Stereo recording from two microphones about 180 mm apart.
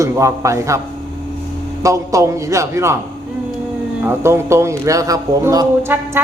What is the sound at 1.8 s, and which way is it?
A man's voice, 20° right (ahead or behind).